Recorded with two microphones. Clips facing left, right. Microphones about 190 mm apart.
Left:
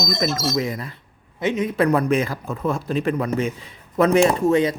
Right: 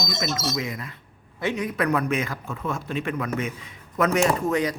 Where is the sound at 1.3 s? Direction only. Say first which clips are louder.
Left 5 dB; 20° left (ahead or behind).